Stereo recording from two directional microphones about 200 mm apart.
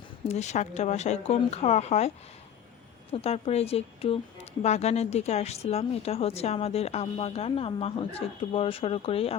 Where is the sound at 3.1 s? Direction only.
30° left (ahead or behind).